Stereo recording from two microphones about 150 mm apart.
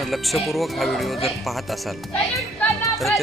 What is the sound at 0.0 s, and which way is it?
Speech, centre (ahead or behind).